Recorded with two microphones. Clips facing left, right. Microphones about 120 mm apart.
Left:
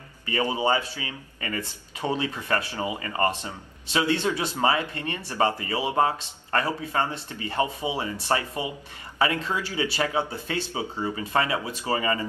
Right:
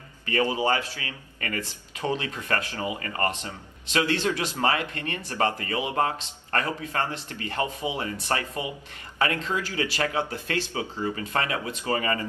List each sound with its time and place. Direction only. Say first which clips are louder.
0.3 s a man's voice: even; 20° left (ahead or behind)